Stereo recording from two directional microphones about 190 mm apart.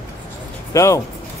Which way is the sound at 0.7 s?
15° left (ahead or behind).